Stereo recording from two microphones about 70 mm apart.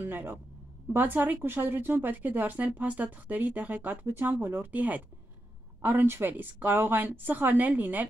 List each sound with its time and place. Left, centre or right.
0.0 s speech: right